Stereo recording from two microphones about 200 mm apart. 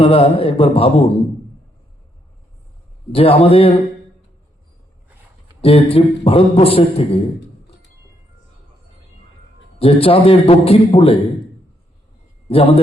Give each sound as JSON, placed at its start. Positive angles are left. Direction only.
{"t": 0.0, "sound": "a man's voice", "side_deg": 30}
{"t": 3.1, "sound": "a man's voice", "side_deg": 30}
{"t": 5.6, "sound": "a man's voice", "side_deg": 30}
{"t": 9.7, "sound": "a man's voice", "side_deg": 30}
{"t": 12.5, "sound": "a man's voice", "side_deg": 30}